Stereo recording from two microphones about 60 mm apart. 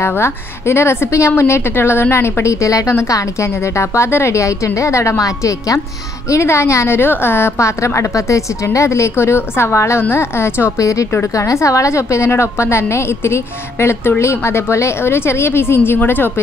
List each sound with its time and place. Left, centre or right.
0.1 s a woman's voice: left
2.6 s a woman's voice: left
6.3 s a woman's voice: left
10.8 s a woman's voice: left